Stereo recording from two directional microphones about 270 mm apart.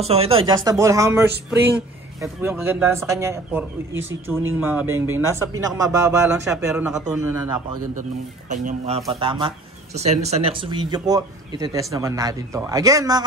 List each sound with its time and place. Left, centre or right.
0.0 s speech: right
8.5 s speech: right